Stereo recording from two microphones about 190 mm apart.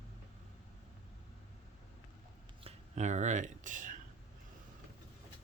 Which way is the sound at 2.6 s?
40° right (ahead or behind).